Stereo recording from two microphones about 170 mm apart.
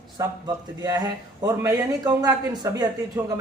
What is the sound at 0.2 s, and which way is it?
A woman's voice, 20° right (ahead or behind).